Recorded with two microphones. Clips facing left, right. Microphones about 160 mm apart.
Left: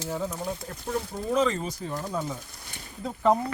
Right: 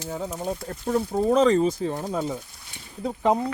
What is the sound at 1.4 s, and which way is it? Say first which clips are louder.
Speech: right 5 dB; 35° right (ahead or behind).